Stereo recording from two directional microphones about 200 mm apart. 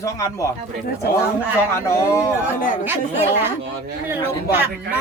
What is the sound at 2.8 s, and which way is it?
Speech, 10° right (ahead or behind).